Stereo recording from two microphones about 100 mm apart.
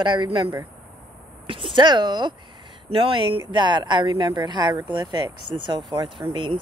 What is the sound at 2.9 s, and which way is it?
Speech, 60° right (ahead or behind).